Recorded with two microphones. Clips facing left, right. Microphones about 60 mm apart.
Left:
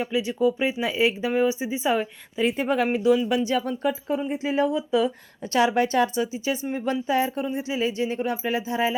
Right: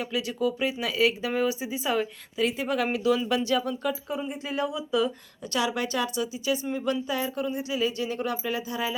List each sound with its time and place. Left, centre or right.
0.0 s speech: left
4.9 s speech: centre
5.4 s speech: left